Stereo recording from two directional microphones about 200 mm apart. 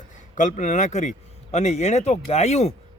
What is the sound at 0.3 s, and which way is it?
Speech, 40° left (ahead or behind).